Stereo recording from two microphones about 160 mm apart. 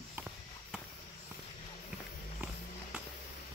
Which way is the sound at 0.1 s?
10° right (ahead or behind).